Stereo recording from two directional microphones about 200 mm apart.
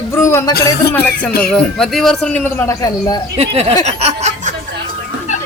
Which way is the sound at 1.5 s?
5° left (ahead or behind).